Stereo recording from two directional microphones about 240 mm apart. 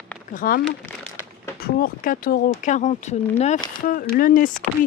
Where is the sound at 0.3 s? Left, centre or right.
Left.